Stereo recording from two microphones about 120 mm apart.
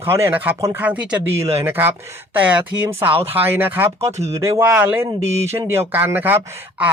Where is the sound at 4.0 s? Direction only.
60° right (ahead or behind).